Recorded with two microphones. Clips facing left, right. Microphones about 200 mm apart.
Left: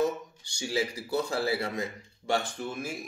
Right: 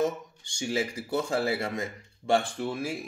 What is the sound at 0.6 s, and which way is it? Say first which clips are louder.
Speech: right 1 dB; 25° right (ahead or behind).